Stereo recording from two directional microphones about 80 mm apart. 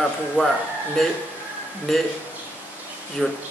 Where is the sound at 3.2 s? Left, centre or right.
Centre.